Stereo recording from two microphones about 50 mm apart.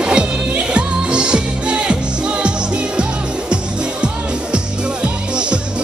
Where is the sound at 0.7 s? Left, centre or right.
Centre.